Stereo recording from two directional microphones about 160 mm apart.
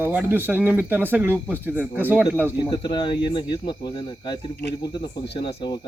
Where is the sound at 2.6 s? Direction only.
30° left (ahead or behind).